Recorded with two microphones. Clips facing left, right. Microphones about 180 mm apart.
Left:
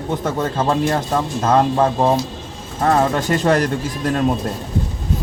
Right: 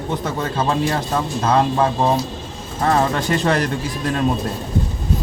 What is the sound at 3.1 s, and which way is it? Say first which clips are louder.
Speech: left 2 dB; 45° left (ahead or behind).